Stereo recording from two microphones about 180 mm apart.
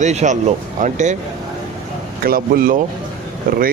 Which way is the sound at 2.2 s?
55° right (ahead or behind).